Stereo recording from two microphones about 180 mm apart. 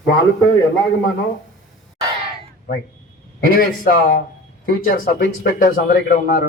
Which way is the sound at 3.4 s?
55° left (ahead or behind).